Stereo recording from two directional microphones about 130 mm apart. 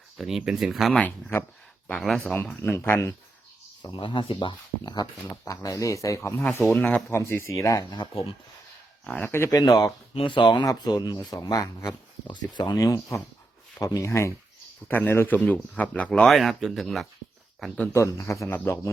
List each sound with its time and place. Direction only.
0.2 s speech: centre (ahead or behind)
0.9 s speech: 15° left (ahead or behind)
2.0 s speech: 5° left (ahead or behind); by 3.2 s 20° left (ahead or behind)
3.8 s speech: 35° left (ahead or behind)
8.1 s speech: 45° left (ahead or behind)
9.0 s speech: 10° left (ahead or behind)
9.6 s speech: 30° left (ahead or behind); by 17.1 s centre (ahead or behind)
17.9 s speech: 20° left (ahead or behind)